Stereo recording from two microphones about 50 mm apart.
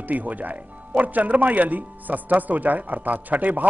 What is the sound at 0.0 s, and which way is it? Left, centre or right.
Speech, right.